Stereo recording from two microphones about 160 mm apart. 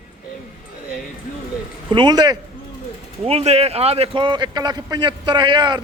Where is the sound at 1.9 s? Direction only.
30° right (ahead or behind).